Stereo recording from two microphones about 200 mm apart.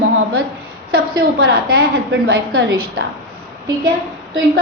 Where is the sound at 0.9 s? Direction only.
50° right (ahead or behind).